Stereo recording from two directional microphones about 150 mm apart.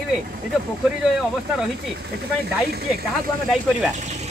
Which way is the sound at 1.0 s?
5° right (ahead or behind).